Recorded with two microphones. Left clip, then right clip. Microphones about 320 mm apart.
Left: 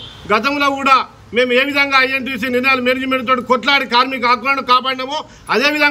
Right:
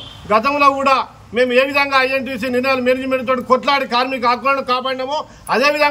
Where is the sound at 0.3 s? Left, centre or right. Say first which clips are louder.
Right 2 dB; centre.